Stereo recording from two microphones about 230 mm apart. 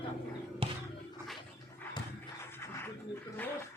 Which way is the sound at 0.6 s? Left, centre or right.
Right.